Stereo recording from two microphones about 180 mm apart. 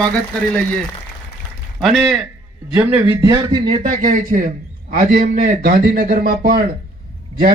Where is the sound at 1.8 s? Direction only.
Centre (ahead or behind).